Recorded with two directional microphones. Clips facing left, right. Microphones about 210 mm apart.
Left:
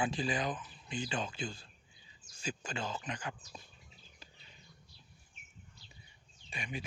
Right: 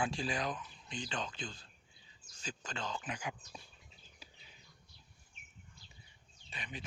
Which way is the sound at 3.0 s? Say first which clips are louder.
Left 1 dB; 10° right (ahead or behind).